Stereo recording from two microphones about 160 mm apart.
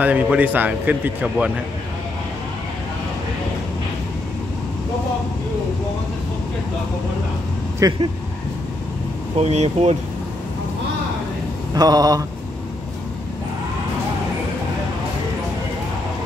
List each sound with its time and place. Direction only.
0.0 s a man's voice: 10° right (ahead or behind)
7.8 s mantra: 20° right (ahead or behind)
9.4 s speech: 40° right (ahead or behind)
11.7 s mantra: 25° right (ahead or behind)